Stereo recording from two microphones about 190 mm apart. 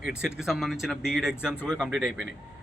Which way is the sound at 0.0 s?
5° right (ahead or behind).